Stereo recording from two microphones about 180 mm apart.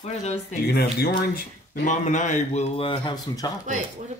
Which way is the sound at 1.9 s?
45° left (ahead or behind).